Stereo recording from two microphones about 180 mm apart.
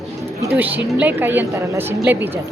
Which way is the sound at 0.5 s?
10° right (ahead or behind).